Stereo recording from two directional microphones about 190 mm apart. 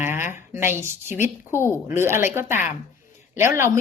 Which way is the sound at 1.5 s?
15° left (ahead or behind).